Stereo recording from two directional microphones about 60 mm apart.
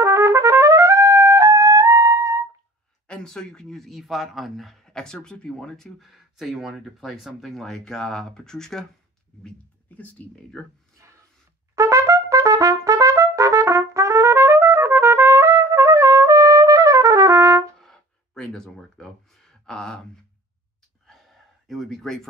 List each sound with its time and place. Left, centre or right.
0.0 s trumpet: right
3.1 s speech: centre
4.8 s speech: centre
9.8 s speech: left
11.7 s trumpet: right
17.7 s a sound: centre
21.6 s speech: centre